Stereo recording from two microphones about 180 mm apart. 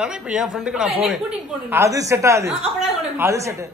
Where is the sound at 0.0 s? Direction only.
5° right (ahead or behind).